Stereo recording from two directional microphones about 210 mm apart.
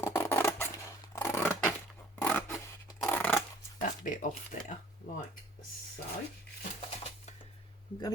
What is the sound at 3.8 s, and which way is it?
Speech, 35° left (ahead or behind).